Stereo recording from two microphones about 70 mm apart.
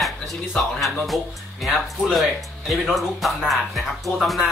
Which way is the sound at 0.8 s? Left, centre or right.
Centre.